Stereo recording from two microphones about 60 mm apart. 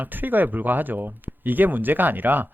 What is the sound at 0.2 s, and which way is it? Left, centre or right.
Speech, right.